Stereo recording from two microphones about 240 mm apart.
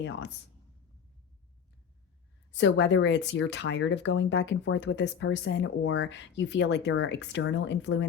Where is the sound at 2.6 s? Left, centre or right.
Left.